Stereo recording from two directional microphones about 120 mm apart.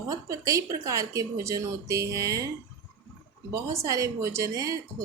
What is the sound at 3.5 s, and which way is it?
A woman's voice, 25° right (ahead or behind).